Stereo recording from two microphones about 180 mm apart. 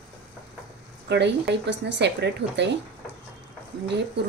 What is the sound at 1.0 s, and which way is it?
Speech, 70° right (ahead or behind).